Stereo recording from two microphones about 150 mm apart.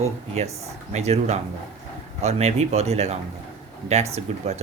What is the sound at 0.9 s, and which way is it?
Speech, 50° right (ahead or behind).